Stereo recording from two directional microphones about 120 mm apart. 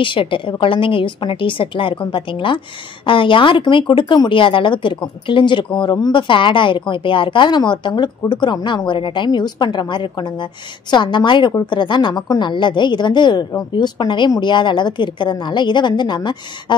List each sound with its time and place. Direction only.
0.0 s a woman's voice: 45° left (ahead or behind)